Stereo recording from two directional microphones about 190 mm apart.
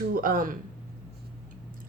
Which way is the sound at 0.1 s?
50° right (ahead or behind).